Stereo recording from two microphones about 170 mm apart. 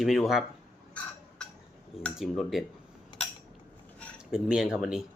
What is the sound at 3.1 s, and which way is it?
Cutlery, 25° left (ahead or behind).